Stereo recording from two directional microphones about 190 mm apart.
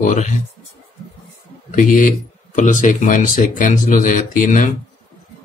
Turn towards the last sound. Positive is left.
turn(degrees=45)  # may be behind; listen again after turning